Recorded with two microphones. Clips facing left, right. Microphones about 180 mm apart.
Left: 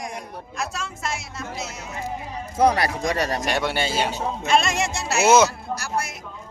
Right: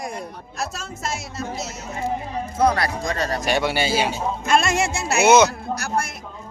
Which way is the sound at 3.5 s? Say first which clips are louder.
Right 3 dB; centre (ahead or behind).